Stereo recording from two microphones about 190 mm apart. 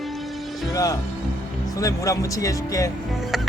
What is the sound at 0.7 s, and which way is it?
Music, 20° left (ahead or behind).